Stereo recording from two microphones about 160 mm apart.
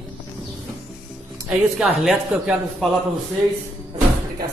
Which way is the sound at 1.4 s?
Centre (ahead or behind).